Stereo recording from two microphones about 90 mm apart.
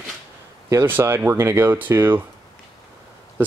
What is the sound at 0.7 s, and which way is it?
Speech, 25° right (ahead or behind).